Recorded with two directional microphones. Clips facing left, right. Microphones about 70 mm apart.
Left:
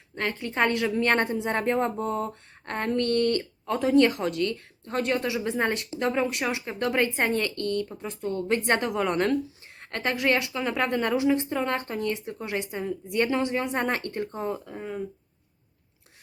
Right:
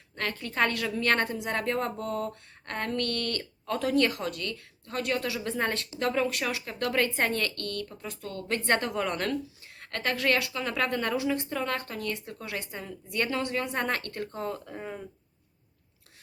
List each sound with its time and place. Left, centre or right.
0.2 s a woman's voice: left
14.6 s speech: centre